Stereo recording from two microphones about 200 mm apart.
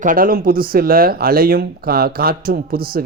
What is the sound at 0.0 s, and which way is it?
Speech, 45° right (ahead or behind).